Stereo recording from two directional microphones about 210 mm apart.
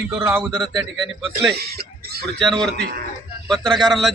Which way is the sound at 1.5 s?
50° right (ahead or behind).